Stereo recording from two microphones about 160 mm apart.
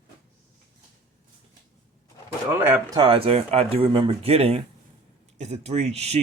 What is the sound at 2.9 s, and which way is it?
Speech, 30° right (ahead or behind).